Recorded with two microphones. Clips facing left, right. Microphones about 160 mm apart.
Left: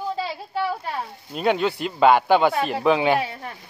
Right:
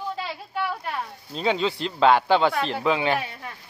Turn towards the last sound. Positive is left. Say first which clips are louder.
# left 4 dB
turn(degrees=15)  # may be behind; listen again after turning